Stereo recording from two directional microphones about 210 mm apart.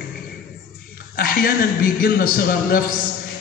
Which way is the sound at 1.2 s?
45° left (ahead or behind).